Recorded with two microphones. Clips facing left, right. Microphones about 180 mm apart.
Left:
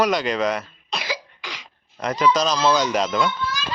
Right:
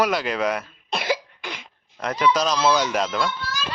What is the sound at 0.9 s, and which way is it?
Cough, 55° right (ahead or behind).